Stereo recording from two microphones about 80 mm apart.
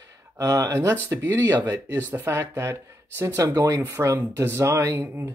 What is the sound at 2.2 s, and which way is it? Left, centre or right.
Speech, right.